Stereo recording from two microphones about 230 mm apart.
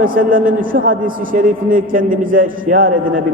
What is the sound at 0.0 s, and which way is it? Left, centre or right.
A man's voice, right.